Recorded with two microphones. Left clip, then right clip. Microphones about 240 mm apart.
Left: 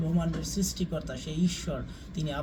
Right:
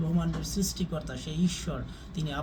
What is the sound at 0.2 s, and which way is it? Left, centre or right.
Speech, centre.